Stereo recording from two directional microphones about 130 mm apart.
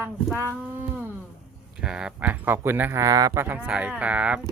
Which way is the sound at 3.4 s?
15° right (ahead or behind).